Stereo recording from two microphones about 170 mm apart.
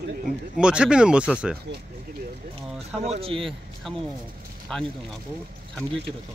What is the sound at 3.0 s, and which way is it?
Speech, 35° right (ahead or behind).